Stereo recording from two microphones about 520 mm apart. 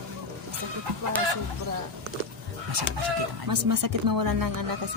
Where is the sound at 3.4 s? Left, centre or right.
Right.